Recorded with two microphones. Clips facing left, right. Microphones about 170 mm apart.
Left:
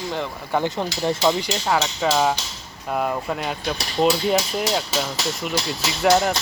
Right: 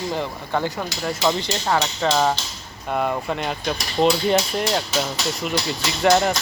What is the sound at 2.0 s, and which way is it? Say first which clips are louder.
Speech: even; 5° left (ahead or behind).